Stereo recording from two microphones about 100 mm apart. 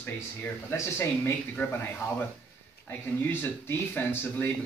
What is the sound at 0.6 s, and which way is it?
Speech, 25° left (ahead or behind).